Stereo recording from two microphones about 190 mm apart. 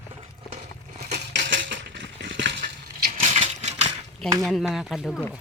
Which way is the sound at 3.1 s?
40° right (ahead or behind).